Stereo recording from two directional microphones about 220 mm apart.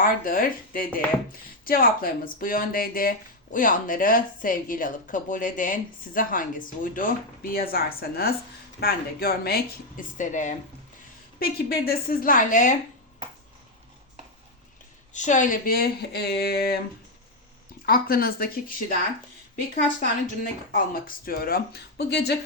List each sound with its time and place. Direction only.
0.0 s a woman's voice: 40° left (ahead or behind)
15.1 s a woman's voice: 35° left (ahead or behind)
17.8 s a woman's voice: 40° left (ahead or behind)
20.0 s speech: 40° left (ahead or behind)